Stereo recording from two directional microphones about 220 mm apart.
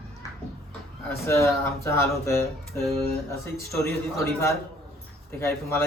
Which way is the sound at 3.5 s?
15° left (ahead or behind).